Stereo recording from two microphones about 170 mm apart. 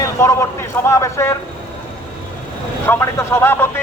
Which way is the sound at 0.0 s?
15° left (ahead or behind).